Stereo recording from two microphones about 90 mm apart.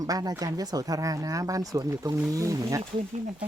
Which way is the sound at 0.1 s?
40° right (ahead or behind).